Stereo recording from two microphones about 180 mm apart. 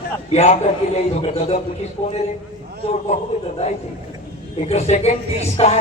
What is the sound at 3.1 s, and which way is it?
Speech, 40° left (ahead or behind).